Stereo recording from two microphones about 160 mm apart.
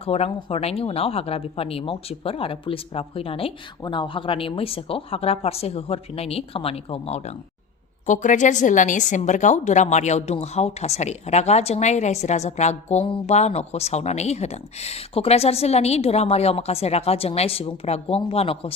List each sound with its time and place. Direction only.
0.0 s a woman's voice: 40° left (ahead or behind)